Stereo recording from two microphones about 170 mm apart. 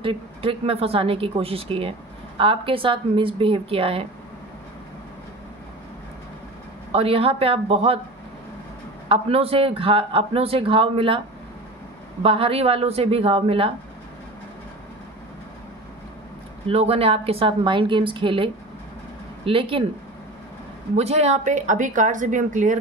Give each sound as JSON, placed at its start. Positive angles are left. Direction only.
{"t": 0.0, "sound": "a man's voice", "side_deg": -35}
{"t": 6.9, "sound": "a man's voice", "side_deg": -35}
{"t": 9.1, "sound": "a man's voice", "side_deg": -35}
{"t": 12.2, "sound": "a man's voice", "side_deg": -35}
{"t": 16.6, "sound": "a man's voice", "side_deg": -35}
{"t": 20.9, "sound": "a woman's voice", "side_deg": -40}